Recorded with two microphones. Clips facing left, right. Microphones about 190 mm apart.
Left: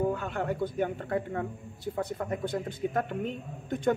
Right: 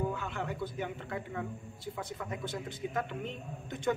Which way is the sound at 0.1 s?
50° left (ahead or behind).